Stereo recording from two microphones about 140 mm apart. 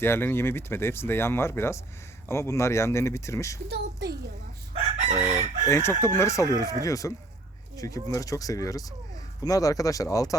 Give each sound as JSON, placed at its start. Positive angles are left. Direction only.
{"t": 0.0, "sound": "speech", "side_deg": 15}
{"t": 4.7, "sound": "chicken", "side_deg": -50}
{"t": 5.6, "sound": "speech", "side_deg": 20}